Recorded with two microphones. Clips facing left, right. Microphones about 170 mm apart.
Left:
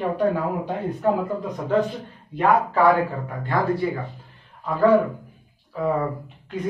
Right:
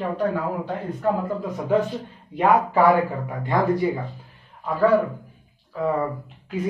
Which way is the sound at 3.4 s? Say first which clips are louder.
Right 2 dB; 20° right (ahead or behind).